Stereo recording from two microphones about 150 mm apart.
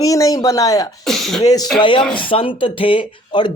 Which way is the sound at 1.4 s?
25° left (ahead or behind).